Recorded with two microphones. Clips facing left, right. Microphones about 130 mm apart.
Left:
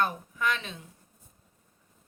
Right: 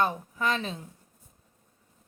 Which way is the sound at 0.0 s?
35° right (ahead or behind).